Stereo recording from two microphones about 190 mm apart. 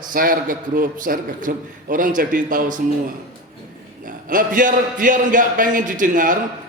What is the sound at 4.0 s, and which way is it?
A man's voice, 45° right (ahead or behind).